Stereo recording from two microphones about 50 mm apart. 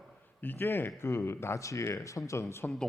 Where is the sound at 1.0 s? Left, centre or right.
Left.